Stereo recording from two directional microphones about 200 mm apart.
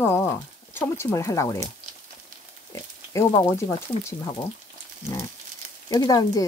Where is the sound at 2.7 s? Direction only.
15° left (ahead or behind).